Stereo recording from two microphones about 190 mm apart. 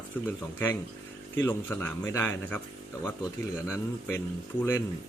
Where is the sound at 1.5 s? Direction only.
10° left (ahead or behind).